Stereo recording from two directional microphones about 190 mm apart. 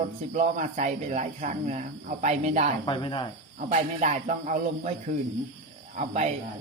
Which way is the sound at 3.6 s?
40° right (ahead or behind).